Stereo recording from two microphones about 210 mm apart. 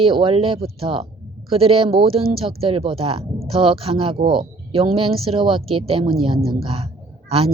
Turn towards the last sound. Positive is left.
turn(degrees=-25)  # may be behind; listen again after turning